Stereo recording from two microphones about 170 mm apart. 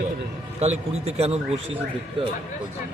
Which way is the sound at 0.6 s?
40° right (ahead or behind).